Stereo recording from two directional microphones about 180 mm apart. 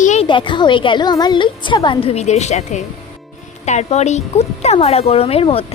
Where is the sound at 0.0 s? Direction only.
40° left (ahead or behind).